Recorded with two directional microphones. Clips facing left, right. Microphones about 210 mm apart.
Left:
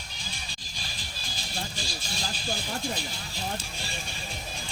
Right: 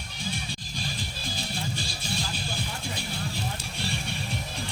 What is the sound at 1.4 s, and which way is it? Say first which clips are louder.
Music: right 2 dB; 60° right (ahead or behind).